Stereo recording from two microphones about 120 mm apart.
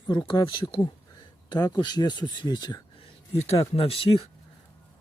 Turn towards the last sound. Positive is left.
turn(degrees=55)  # may be behind; listen again after turning